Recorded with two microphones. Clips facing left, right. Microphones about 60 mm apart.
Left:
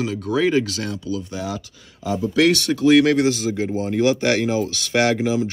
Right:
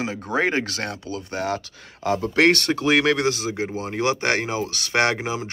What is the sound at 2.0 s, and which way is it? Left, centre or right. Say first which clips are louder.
Speech: even; right.